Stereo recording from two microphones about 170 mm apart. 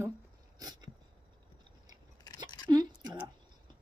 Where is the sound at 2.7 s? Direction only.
25° right (ahead or behind).